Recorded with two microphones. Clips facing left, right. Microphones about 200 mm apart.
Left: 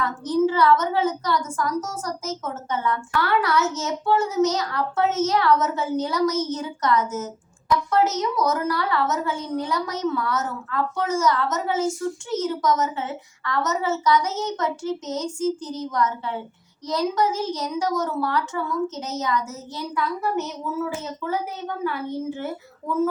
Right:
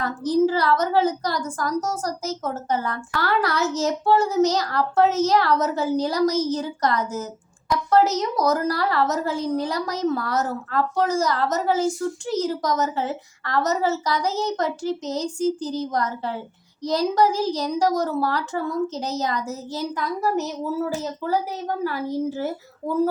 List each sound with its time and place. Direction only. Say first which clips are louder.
0.0 s a woman's voice: right 1 dB; 35° right (ahead or behind)